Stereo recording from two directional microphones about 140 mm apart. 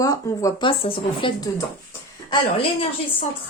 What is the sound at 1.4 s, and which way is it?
Speech, 20° left (ahead or behind).